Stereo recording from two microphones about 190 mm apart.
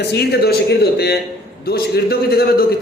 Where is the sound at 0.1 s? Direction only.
60° left (ahead or behind).